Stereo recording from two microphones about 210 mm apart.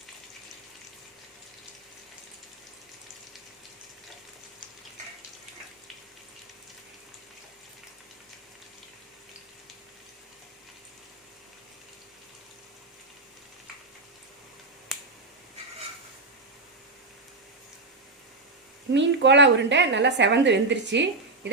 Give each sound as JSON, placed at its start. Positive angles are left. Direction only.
{"t": 14.9, "sound": "finger snapping", "side_deg": 0}
{"t": 18.9, "sound": "a woman's voice", "side_deg": -60}